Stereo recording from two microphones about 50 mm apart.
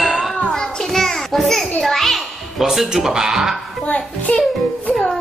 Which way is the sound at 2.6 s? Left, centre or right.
Centre.